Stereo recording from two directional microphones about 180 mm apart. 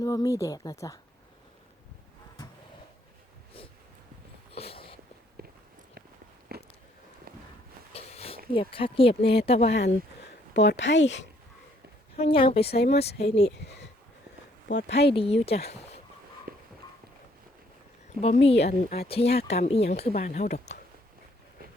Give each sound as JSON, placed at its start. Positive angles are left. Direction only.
{"t": 0.0, "sound": "speech", "side_deg": 20}
{"t": 4.5, "sound": "a sound", "side_deg": 35}
{"t": 5.4, "sound": "walk", "side_deg": -60}
{"t": 6.5, "sound": "biting", "side_deg": -60}
{"t": 7.9, "sound": "a sound", "side_deg": 35}
{"t": 8.5, "sound": "speech", "side_deg": 30}
{"t": 10.5, "sound": "speech", "side_deg": 75}
{"t": 12.1, "sound": "speech", "side_deg": 30}
{"t": 13.2, "sound": "speech", "side_deg": 70}
{"t": 15.1, "sound": "speech", "side_deg": 30}
{"t": 16.5, "sound": "clip-clop", "side_deg": -55}
{"t": 18.4, "sound": "speech", "side_deg": 35}